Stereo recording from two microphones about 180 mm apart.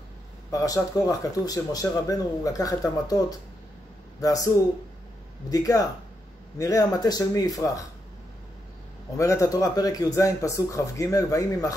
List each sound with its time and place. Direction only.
0.5 s speech: 20° left (ahead or behind)
5.5 s speech: 20° left (ahead or behind)
9.1 s speech: 15° left (ahead or behind)